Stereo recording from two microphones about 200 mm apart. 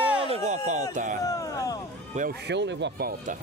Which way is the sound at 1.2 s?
15° left (ahead or behind).